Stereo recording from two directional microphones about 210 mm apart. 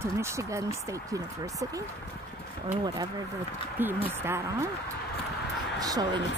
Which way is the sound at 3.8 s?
10° right (ahead or behind).